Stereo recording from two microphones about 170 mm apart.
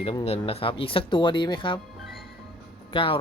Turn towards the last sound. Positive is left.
turn(degrees=30)  # may be behind; listen again after turning